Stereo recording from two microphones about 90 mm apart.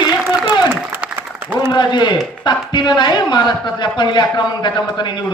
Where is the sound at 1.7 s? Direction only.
55° left (ahead or behind).